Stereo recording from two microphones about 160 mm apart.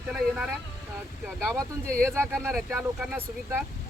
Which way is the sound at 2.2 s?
5° left (ahead or behind).